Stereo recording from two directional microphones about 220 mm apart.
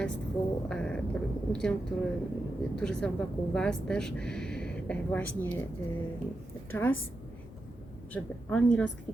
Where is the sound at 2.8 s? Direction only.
5° left (ahead or behind).